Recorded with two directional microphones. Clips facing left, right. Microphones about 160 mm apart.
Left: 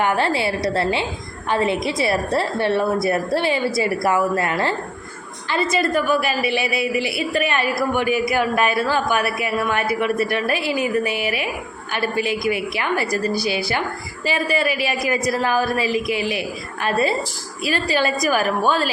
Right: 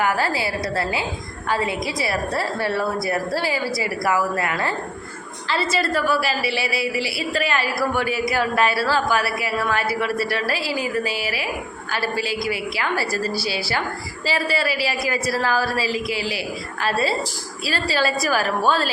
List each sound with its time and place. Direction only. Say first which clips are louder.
0.0 s a woman's voice: left 2 dB; 25° left (ahead or behind)
5.5 s a woman's voice: left 2 dB; 20° left (ahead or behind)